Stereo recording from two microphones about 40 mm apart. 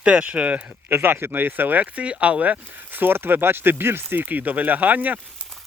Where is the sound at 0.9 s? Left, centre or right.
Right.